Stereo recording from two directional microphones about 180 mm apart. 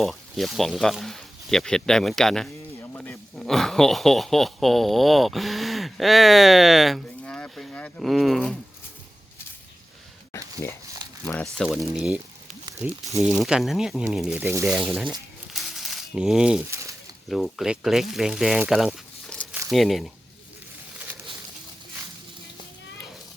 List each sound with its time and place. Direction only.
0.0 s speech: centre (ahead or behind)
10.6 s speech: 15° left (ahead or behind)
11.5 s speech: centre (ahead or behind)
12.8 s speech: 15° right (ahead or behind)
13.3 s speech: centre (ahead or behind)
15.5 s crumpling: centre (ahead or behind)
17.2 s speech: centre (ahead or behind)
21.0 s a sound: 10° right (ahead or behind)